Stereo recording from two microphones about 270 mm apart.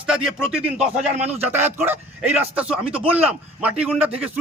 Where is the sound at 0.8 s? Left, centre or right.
Right.